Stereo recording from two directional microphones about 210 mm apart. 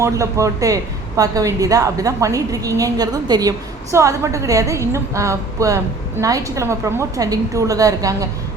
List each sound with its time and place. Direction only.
0.0 s a woman's voice: 15° right (ahead or behind)